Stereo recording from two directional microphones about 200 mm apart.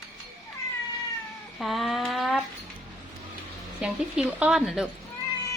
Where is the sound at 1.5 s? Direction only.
Centre (ahead or behind).